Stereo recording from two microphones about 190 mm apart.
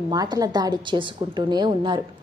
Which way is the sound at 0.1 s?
20° right (ahead or behind).